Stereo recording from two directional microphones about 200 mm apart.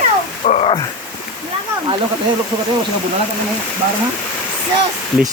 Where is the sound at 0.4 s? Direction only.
30° left (ahead or behind).